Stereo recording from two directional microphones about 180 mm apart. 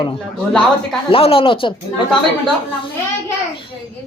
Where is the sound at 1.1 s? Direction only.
30° left (ahead or behind).